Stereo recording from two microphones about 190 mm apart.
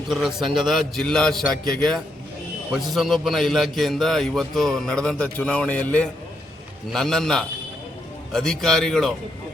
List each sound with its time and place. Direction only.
0.1 s a man's voice: centre (ahead or behind)
2.7 s a man's voice: centre (ahead or behind)